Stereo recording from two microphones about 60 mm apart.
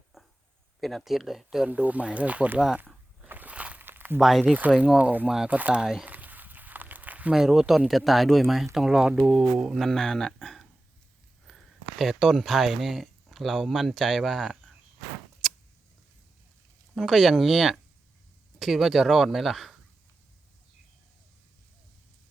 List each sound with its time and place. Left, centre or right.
0.1 s a sound: centre
0.8 s speech: centre
1.6 s speech: right
2.7 s a sound: right
3.2 s walk: right
3.8 s a sound: right
4.2 s speech: centre
4.4 s speech: right
5.8 s speech: centre
6.1 s a sound: right
7.3 s speech: centre
9.7 s speech: centre
15.4 s keys jangling: centre
16.9 s speech: centre